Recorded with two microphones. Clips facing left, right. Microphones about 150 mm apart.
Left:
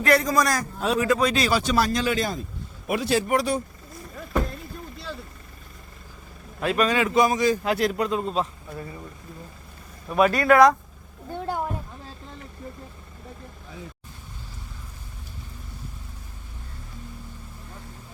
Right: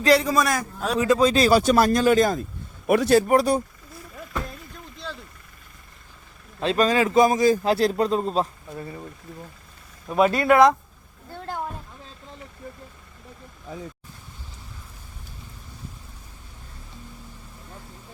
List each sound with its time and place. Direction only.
0.3 s a man's voice: 5° right (ahead or behind)
0.9 s a man's voice: 25° right (ahead or behind); by 3.2 s 55° right (ahead or behind)
3.2 s a man's voice: 40° right (ahead or behind)
6.6 s a man's voice: 30° right (ahead or behind)
10.1 s speech: 25° right (ahead or behind)
11.3 s a sound: 15° left (ahead or behind)